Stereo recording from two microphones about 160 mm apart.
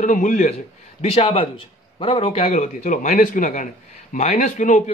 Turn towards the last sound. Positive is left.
turn(degrees=50)  # may be behind; listen again after turning